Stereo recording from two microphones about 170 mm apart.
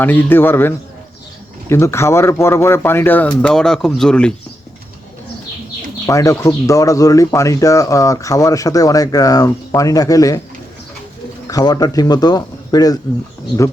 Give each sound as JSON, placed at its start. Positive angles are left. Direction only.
{"t": 0.0, "sound": "speech", "side_deg": 10}
{"t": 1.7, "sound": "speech", "side_deg": 15}
{"t": 6.1, "sound": "speech", "side_deg": 20}
{"t": 11.4, "sound": "speech", "side_deg": 20}